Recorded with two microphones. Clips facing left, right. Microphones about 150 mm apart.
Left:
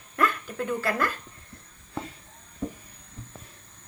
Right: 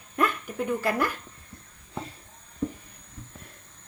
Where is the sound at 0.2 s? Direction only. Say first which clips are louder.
Even; 15° right (ahead or behind).